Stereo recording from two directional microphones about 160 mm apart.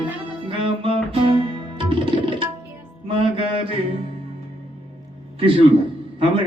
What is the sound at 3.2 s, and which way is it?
Mantra, 35° right (ahead or behind).